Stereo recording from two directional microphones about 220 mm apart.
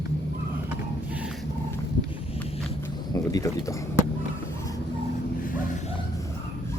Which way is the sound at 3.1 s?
15° left (ahead or behind).